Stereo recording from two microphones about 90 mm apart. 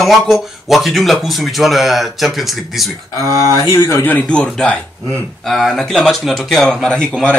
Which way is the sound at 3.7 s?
35° left (ahead or behind).